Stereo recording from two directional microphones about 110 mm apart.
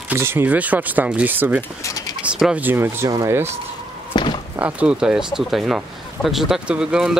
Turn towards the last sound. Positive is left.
turn(degrees=-5)  # may be behind; listen again after turning